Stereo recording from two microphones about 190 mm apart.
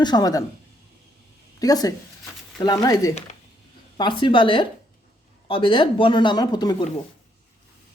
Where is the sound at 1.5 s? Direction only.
20° left (ahead or behind).